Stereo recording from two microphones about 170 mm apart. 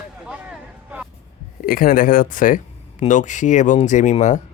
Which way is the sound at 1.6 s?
55° left (ahead or behind).